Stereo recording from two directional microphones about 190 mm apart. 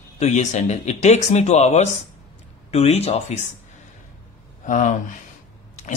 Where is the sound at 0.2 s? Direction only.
40° left (ahead or behind).